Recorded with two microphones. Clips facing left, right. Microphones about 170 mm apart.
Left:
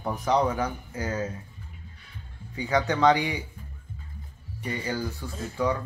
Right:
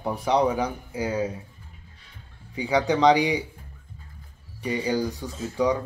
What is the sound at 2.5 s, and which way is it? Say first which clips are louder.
Speech: right 3 dB; 10° right (ahead or behind).